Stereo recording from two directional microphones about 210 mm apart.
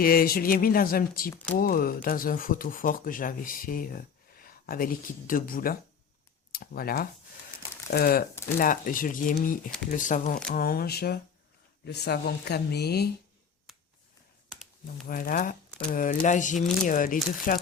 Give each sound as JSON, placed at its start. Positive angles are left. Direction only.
{"t": 0.0, "sound": "speech", "side_deg": 45}
{"t": 14.5, "sound": "computer keyboard", "side_deg": 0}
{"t": 15.0, "sound": "speech", "side_deg": 40}